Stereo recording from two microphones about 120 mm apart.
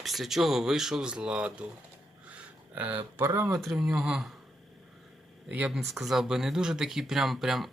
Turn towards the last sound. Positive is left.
turn(degrees=0)  # may be behind; listen again after turning